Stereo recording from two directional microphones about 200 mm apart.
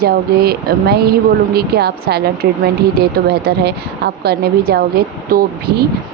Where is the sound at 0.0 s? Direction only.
50° right (ahead or behind).